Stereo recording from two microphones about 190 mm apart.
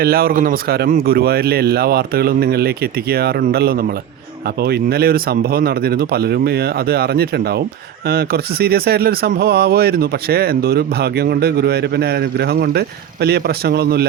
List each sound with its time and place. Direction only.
0.0 s speech: 50° right (ahead or behind)